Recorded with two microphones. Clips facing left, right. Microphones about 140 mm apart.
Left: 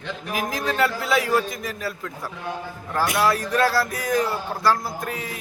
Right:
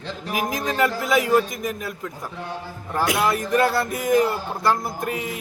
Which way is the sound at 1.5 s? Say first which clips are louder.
Right 1 dB; 15° right (ahead or behind).